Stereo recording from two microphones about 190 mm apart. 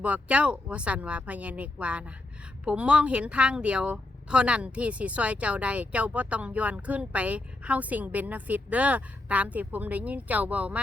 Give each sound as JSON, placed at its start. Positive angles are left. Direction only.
{"t": 0.0, "sound": "a woman's voice", "side_deg": -5}